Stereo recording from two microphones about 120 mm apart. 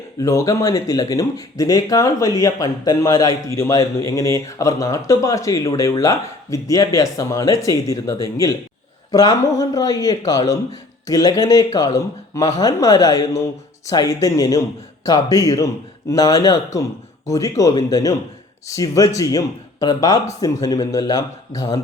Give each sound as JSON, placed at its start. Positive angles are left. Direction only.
{"t": 0.2, "sound": "speech", "side_deg": 25}